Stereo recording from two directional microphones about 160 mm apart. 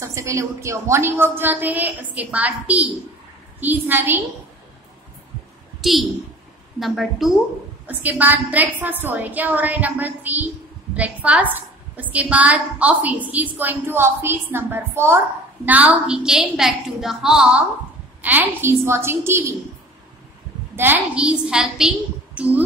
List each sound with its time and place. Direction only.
0.0 s a woman's voice: 20° right (ahead or behind)
5.8 s a sound: centre (ahead or behind)
6.8 s a woman's voice: centre (ahead or behind)
20.7 s a woman's voice: 10° right (ahead or behind)